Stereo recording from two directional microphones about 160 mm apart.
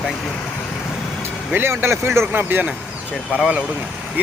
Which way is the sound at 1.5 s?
15° right (ahead or behind).